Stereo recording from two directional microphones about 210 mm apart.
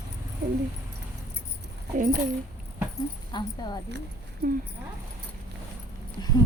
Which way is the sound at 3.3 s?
20° left (ahead or behind).